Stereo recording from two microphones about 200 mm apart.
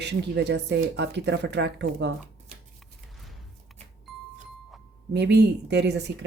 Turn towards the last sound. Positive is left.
turn(degrees=-60)  # may be behind; listen again after turning